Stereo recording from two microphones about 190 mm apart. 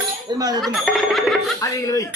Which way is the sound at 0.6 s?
Centre (ahead or behind).